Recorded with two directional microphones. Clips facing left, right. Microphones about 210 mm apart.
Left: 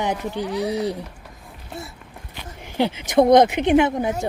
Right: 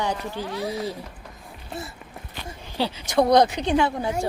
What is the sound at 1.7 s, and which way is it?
Speech, centre (ahead or behind).